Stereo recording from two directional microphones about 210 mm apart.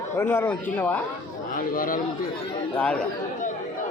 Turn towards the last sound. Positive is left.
turn(degrees=5)  # may be behind; listen again after turning